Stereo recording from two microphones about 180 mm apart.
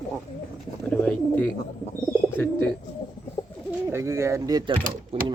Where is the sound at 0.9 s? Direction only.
5° left (ahead or behind).